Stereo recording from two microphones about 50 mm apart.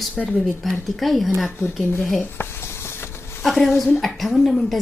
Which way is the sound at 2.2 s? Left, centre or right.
Left.